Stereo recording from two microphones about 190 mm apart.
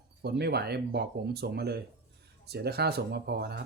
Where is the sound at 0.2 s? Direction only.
60° right (ahead or behind).